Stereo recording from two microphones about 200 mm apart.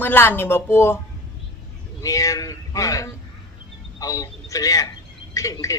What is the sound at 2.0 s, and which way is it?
A man's voice, 15° left (ahead or behind).